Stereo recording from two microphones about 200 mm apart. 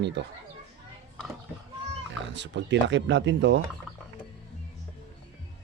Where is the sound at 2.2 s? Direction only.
60° right (ahead or behind).